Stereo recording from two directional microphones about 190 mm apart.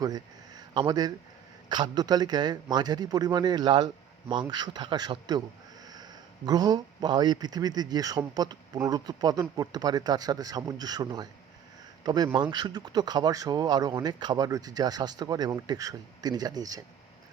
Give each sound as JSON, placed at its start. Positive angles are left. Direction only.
{"t": 0.0, "sound": "a man's voice", "side_deg": -20}